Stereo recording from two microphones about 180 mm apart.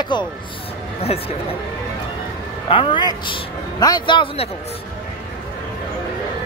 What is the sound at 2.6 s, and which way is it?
A man's voice, 30° left (ahead or behind).